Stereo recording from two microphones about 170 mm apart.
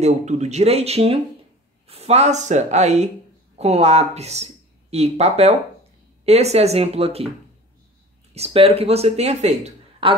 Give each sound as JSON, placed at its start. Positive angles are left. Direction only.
{"t": 0.0, "sound": "speech", "side_deg": -40}
{"t": 8.4, "sound": "speech", "side_deg": -35}